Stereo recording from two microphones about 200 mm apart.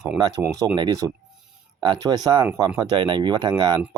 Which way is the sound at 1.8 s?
20° right (ahead or behind).